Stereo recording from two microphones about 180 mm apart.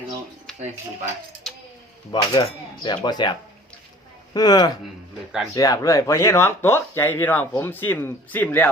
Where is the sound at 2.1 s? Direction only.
25° left (ahead or behind).